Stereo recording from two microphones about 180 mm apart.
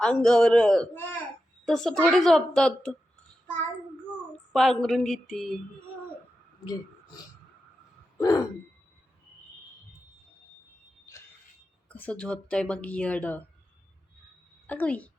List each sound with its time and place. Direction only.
0.0 s a woman's voice: 5° left (ahead or behind)
4.5 s a woman's voice: centre (ahead or behind)
8.2 s a sound: 20° left (ahead or behind)
11.9 s speech: 5° left (ahead or behind)
14.7 s speech: 10° left (ahead or behind)